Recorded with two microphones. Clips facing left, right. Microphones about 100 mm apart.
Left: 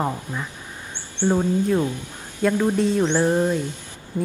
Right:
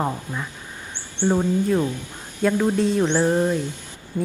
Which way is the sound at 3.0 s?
15° right (ahead or behind).